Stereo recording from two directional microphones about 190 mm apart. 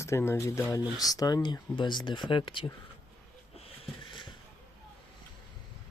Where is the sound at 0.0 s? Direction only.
15° left (ahead or behind).